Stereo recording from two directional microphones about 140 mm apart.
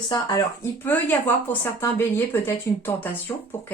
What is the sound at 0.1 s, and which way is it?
Speech, 25° left (ahead or behind).